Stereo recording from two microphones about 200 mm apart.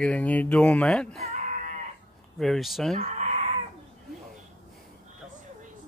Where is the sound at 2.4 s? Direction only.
Centre (ahead or behind).